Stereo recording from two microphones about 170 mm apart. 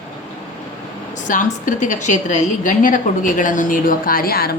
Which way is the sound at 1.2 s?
50° left (ahead or behind).